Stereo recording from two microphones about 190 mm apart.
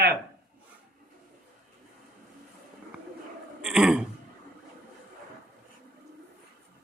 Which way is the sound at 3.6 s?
5° right (ahead or behind).